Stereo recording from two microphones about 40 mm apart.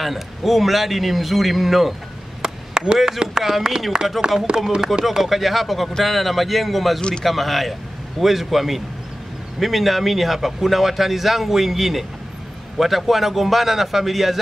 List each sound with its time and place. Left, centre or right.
0.0 s speech: centre
2.4 s chop: right
3.2 s speech: centre
5.0 s speech: centre